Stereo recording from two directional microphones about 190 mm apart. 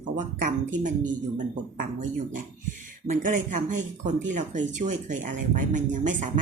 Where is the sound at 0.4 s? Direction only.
40° right (ahead or behind).